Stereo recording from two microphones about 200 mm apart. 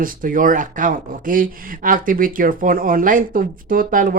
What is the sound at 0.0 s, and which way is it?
Speech, 45° right (ahead or behind).